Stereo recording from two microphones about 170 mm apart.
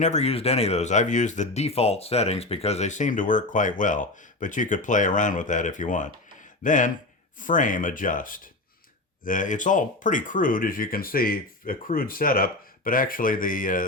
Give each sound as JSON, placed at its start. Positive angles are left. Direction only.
{"t": 0.0, "sound": "speech", "side_deg": 40}